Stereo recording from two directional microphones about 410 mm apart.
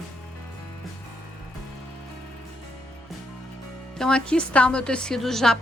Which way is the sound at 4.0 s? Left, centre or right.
Centre.